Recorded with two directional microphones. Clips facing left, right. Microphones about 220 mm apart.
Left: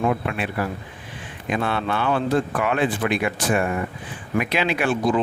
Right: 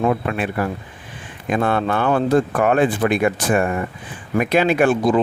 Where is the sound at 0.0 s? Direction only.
45° right (ahead or behind).